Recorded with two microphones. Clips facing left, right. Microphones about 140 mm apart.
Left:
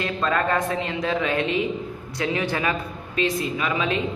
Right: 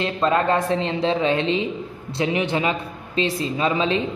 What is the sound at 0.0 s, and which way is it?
A woman's voice, 25° right (ahead or behind).